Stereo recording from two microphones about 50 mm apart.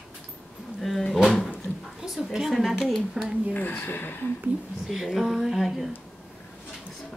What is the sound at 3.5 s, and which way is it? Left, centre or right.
Speech, left.